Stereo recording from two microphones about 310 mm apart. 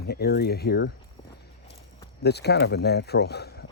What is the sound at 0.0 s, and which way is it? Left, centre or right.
Speech, left.